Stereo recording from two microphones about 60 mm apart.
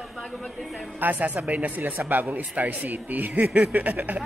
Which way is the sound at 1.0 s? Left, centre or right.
Right.